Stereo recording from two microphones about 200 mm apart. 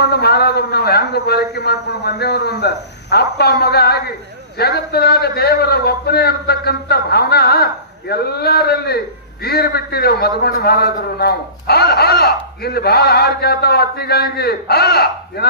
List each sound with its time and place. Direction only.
0.0 s a man's voice: 50° left (ahead or behind)